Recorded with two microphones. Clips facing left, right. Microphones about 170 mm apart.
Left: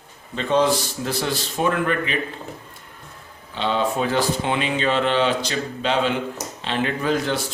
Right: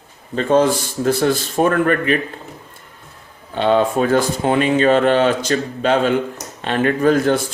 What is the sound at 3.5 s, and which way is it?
Speech, 55° right (ahead or behind).